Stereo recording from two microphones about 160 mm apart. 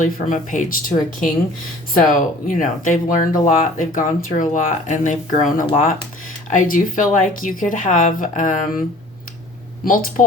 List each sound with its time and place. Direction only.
0.0 s speech: 50° left (ahead or behind)
2.0 s a woman's voice: 55° left (ahead or behind)
9.8 s a woman's voice: 60° left (ahead or behind)